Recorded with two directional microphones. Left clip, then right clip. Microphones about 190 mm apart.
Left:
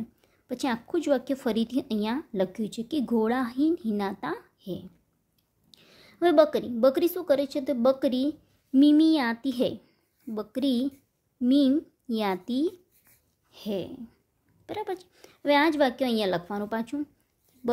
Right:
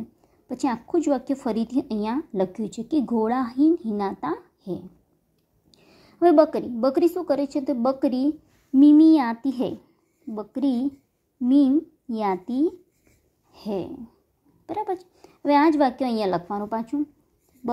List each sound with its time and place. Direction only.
0.5 s a woman's voice: 15° left (ahead or behind)
4.6 s a sound: 10° left (ahead or behind)
5.7 s a woman's voice: 10° left (ahead or behind)